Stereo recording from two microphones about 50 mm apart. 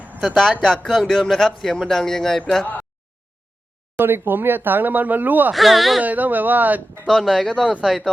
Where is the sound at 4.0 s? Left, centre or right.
Right.